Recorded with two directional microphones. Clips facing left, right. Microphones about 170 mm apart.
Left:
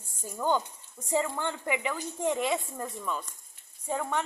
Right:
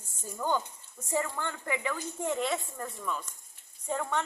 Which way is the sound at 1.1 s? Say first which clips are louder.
Left 3 dB; 20° left (ahead or behind).